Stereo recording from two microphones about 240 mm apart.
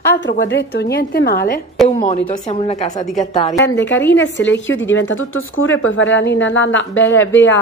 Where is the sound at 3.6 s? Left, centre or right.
Left.